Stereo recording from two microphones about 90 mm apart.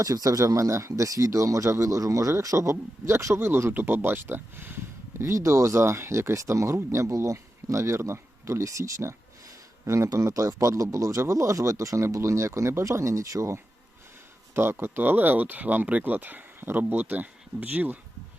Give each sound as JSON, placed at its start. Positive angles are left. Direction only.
{"t": 0.0, "sound": "speech", "side_deg": -40}